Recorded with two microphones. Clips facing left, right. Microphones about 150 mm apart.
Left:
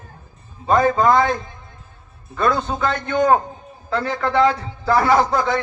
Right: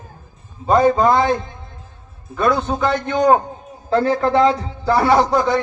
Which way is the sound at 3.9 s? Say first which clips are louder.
Right 6 dB; 30° right (ahead or behind).